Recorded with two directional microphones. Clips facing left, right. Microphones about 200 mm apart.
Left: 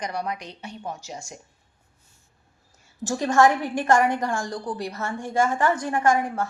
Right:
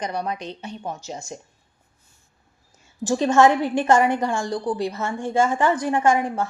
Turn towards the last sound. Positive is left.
turn(degrees=-20)  # may be behind; listen again after turning